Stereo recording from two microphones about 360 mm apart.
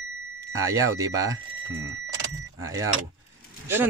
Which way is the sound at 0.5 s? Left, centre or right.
Centre.